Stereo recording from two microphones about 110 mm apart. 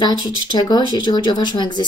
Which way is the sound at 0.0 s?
45° left (ahead or behind).